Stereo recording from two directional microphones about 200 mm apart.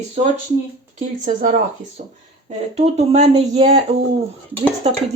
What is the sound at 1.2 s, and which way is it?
Speech, 40° right (ahead or behind).